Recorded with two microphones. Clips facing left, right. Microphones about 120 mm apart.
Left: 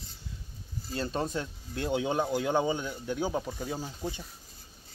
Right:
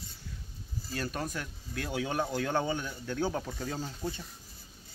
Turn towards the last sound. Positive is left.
turn(degrees=15)  # may be behind; listen again after turning